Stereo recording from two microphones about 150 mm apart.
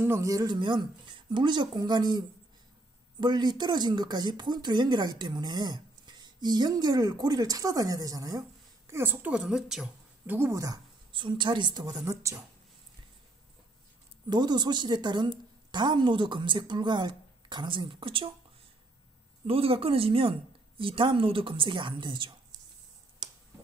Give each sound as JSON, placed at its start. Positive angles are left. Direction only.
{"t": 0.0, "sound": "speech", "side_deg": -20}
{"t": 10.3, "sound": "speech", "side_deg": -20}
{"t": 11.1, "sound": "speech", "side_deg": -35}
{"t": 14.3, "sound": "a woman's voice", "side_deg": -30}
{"t": 19.4, "sound": "a woman's voice", "side_deg": -40}